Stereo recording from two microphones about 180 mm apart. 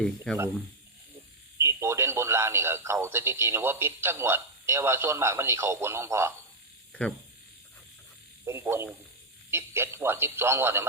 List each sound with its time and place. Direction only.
0.3 s speech: 5° left (ahead or behind)
1.5 s speech: 15° right (ahead or behind)
7.0 s speech: 5° left (ahead or behind)
8.4 s speech: 10° right (ahead or behind)